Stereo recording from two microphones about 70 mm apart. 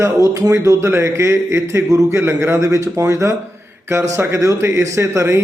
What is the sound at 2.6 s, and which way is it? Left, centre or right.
A man's voice, right.